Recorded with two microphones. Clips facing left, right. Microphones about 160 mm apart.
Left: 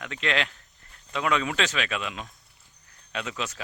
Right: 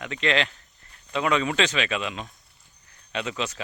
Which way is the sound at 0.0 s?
Centre (ahead or behind).